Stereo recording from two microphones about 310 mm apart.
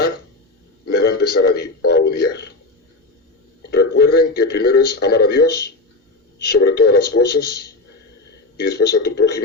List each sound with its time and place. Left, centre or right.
0.9 s a man's voice: left
3.7 s a man's voice: left